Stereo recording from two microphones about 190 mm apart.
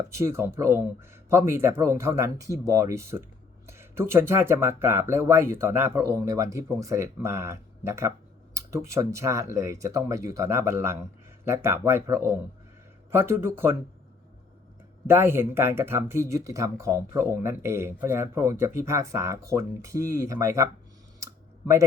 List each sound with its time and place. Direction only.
0.1 s speech: 15° right (ahead or behind)
15.0 s speech: 10° right (ahead or behind)